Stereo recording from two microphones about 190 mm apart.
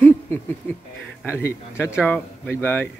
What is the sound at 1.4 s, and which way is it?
Speech, 15° left (ahead or behind).